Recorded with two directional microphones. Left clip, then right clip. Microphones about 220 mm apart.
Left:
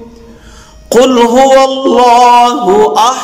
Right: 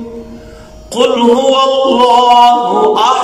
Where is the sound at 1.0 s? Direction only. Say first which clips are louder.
Left 2 dB; 50° left (ahead or behind).